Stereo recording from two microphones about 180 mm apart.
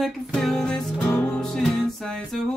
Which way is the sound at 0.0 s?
Centre (ahead or behind).